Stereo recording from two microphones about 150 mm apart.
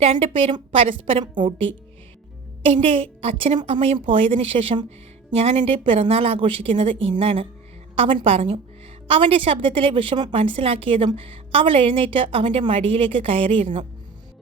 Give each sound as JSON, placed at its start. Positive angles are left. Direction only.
{"t": 0.0, "sound": "a woman's voice", "side_deg": -40}
{"t": 2.6, "sound": "a woman's voice", "side_deg": -40}